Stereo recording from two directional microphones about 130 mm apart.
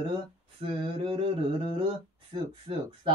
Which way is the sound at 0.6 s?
40° right (ahead or behind).